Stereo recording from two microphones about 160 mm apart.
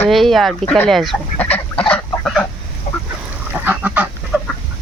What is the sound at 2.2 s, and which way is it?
Fowl, 5° left (ahead or behind).